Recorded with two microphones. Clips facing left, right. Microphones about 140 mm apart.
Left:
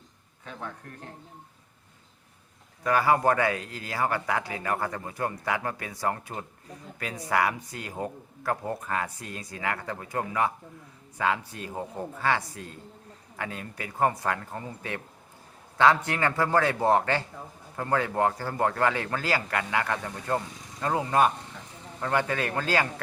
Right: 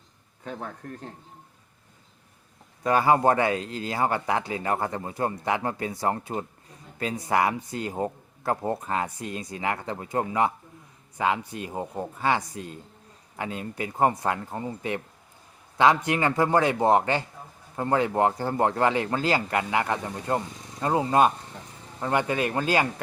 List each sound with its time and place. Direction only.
0.4 s speech: 40° right (ahead or behind)
2.8 s a man's voice: 25° right (ahead or behind)